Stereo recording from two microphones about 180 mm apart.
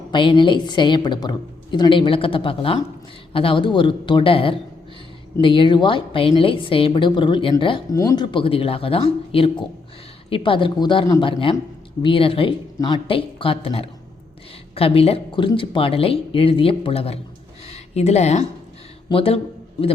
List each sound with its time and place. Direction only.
0.1 s a woman's voice: 25° left (ahead or behind)